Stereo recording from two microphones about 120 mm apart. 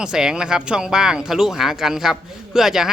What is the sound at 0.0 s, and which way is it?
Speech, 5° right (ahead or behind).